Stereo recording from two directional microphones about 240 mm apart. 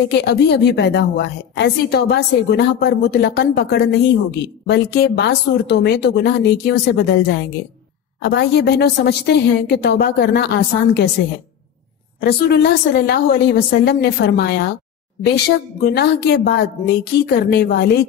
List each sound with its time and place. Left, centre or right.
0.1 s a woman's voice: left
12.2 s a woman's voice: left